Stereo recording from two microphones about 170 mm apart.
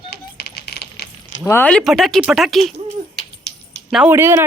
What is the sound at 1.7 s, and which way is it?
A woman's voice, 5° left (ahead or behind).